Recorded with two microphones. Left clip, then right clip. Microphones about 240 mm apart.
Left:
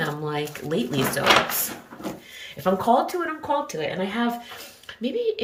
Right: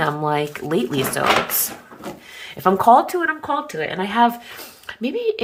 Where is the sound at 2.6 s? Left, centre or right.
Centre.